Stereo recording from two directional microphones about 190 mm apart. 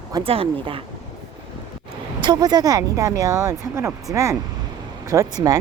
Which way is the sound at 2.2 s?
20° right (ahead or behind).